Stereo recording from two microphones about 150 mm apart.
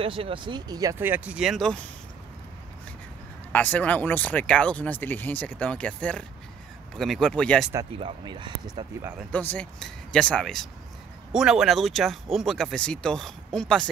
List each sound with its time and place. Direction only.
0.0 s speech: 40° right (ahead or behind); by 1.9 s 5° left (ahead or behind)
3.5 s speech: 10° left (ahead or behind)
8.0 s speech: 30° right (ahead or behind)
9.3 s speech: 10° left (ahead or behind)